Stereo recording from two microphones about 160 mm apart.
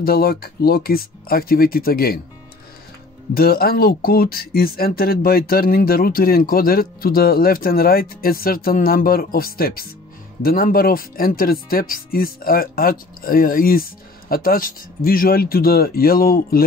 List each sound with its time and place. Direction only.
0.0 s speech: 70° left (ahead or behind)
3.3 s speech: 70° left (ahead or behind)